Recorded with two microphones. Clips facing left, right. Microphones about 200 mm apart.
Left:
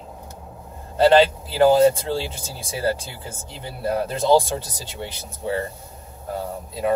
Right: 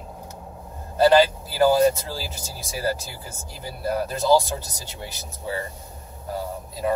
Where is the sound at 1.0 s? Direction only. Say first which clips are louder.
Left 2 dB; 25° left (ahead or behind).